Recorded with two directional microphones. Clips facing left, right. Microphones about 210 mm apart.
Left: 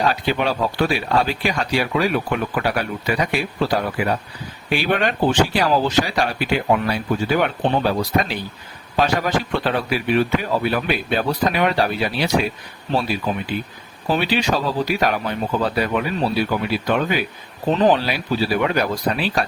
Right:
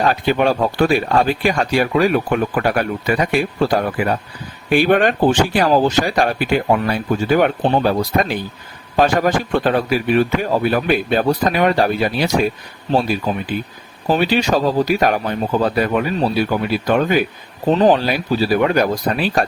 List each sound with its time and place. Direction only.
0.0 s speech: 50° right (ahead or behind)
9.0 s speech: 50° right (ahead or behind)